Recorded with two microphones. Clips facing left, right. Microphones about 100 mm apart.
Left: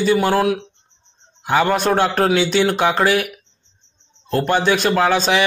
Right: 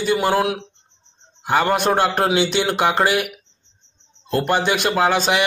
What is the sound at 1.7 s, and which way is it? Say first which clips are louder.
A man's voice: left 1 dB; 10° right (ahead or behind).